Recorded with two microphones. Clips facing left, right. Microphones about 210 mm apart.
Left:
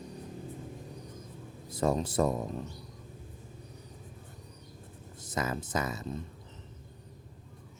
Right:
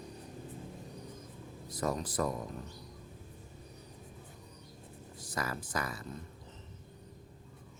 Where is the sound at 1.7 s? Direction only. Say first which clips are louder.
Left 6 dB; 25° left (ahead or behind).